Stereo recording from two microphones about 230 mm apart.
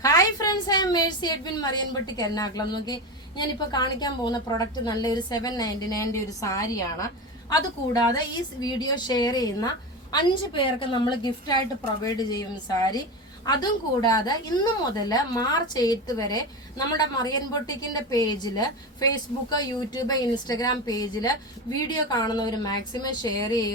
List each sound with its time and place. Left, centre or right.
0.0 s a woman's voice: centre